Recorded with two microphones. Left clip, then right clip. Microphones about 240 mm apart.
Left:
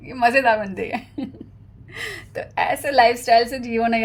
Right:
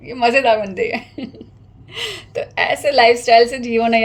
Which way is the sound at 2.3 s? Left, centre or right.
Left.